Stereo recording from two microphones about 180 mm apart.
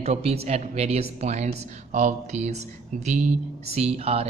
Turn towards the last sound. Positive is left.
turn(degrees=-35)  # may be behind; listen again after turning